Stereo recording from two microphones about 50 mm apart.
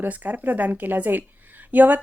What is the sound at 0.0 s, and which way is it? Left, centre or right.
Speech, right.